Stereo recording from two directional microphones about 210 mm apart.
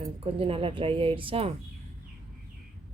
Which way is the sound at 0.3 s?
25° right (ahead or behind).